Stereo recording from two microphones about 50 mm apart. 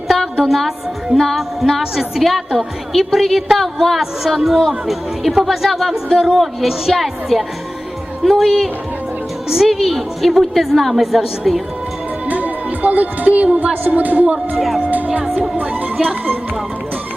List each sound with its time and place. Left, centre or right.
0.4 s a woman's voice: centre
2.2 s a woman's voice: centre
6.1 s a woman's voice: centre
12.2 s music: right
13.8 s speech: right
14.3 s a woman's voice: centre
14.8 s music: right
15.4 s speech: right